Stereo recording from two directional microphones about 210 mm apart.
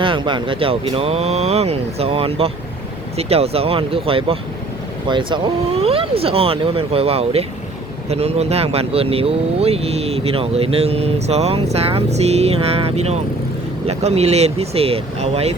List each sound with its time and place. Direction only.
0.0 s speech: 25° right (ahead or behind)